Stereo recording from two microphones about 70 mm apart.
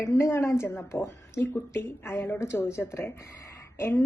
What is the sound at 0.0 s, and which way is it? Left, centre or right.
Speech, left.